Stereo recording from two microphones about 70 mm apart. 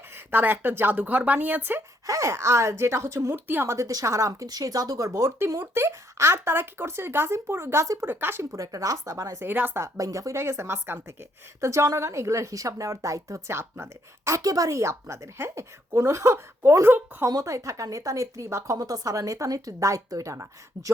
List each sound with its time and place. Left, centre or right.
0.3 s speech: right
2.0 s a woman's voice: right
3.4 s speech: right
3.7 s speech: right
5.5 s speech: right
8.5 s a woman's voice: right
9.4 s speech: right
9.8 s a woman's voice: right
11.6 s a woman's voice: right
13.6 s speech: right
14.4 s a woman's voice: right
17.2 s a woman's voice: right
18.8 s a woman's voice: right